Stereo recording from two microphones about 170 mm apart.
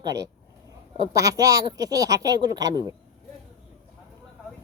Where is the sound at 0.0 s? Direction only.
20° right (ahead or behind).